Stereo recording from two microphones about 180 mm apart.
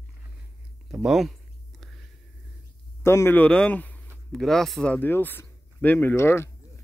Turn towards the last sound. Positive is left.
turn(degrees=15)  # may be behind; listen again after turning